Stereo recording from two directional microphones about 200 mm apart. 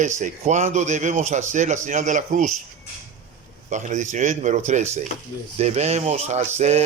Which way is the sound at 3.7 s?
35° right (ahead or behind).